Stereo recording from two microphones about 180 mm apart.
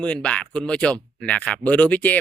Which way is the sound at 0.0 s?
5° left (ahead or behind).